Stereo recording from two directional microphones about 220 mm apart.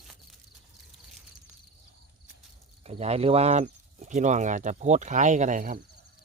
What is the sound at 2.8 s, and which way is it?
Speech, 30° right (ahead or behind).